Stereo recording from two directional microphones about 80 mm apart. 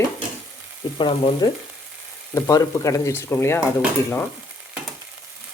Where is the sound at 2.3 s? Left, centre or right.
Left.